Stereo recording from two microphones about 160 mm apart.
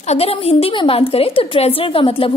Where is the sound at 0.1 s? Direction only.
40° left (ahead or behind).